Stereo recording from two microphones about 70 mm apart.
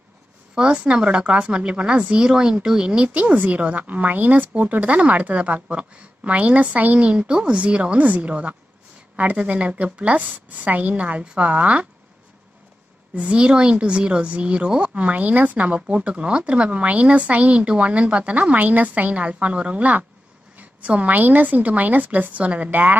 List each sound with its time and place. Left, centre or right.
0.6 s a woman's voice: centre
13.1 s speech: centre